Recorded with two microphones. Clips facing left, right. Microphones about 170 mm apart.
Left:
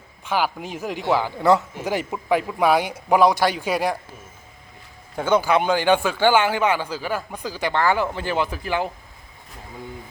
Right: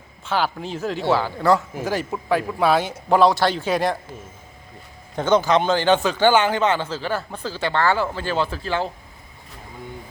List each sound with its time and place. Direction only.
0.3 s a man's voice: 10° left (ahead or behind)
5.1 s a man's voice: 10° left (ahead or behind)